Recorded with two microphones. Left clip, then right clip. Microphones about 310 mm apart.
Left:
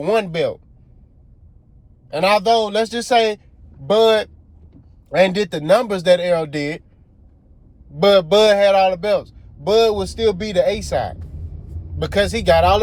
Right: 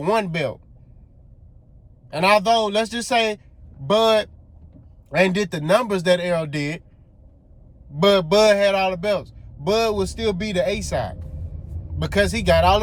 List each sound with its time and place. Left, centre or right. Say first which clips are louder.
0.0 s a man's voice: left 3 dB; right
2.1 s a man's voice: left 2 dB; right
5.0 s a man's voice: left 4 dB; right
7.9 s a man's voice: left 3 dB; right